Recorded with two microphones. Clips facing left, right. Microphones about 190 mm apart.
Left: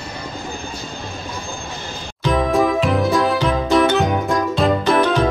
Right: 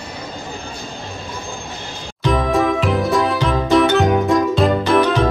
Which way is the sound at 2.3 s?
Centre (ahead or behind).